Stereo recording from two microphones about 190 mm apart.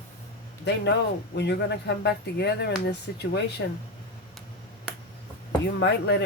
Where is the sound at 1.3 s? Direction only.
60° left (ahead or behind).